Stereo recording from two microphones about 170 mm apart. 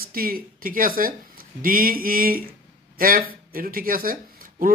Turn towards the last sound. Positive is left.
turn(degrees=-55)  # may be behind; listen again after turning